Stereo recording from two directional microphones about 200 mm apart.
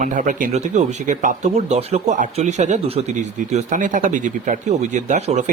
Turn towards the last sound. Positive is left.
turn(degrees=-35)  # may be behind; listen again after turning